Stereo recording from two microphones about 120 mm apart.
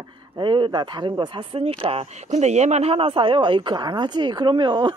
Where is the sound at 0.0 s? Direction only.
40° right (ahead or behind).